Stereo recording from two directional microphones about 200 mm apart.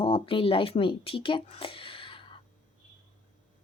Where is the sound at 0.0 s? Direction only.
25° left (ahead or behind).